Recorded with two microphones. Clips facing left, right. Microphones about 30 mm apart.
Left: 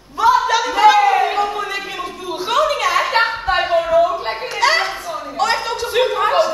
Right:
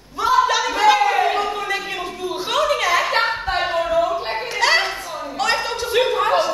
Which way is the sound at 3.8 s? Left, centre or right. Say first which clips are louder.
Left 5 dB; left.